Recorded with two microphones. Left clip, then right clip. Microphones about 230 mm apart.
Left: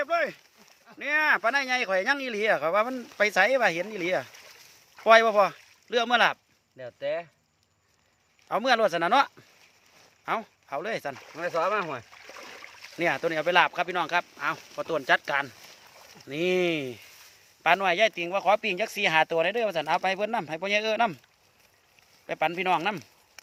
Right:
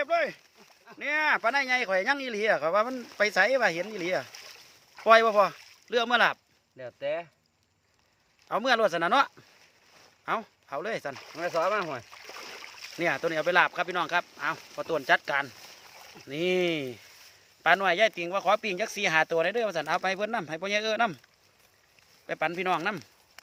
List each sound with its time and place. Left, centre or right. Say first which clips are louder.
0.0 s a sound: even; centre
0.9 s speech: left 2 dB; centre
8.4 s speech: left 1 dB; centre
12.1 s rowboat: right 1 dB; right
13.0 s speech: left 1 dB; centre
22.3 s speech: left 3 dB; centre